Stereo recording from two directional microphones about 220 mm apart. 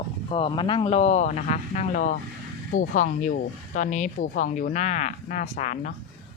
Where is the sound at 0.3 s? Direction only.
25° left (ahead or behind).